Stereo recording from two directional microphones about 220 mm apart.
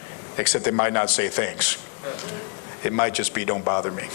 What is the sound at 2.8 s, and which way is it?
Speech, 20° left (ahead or behind).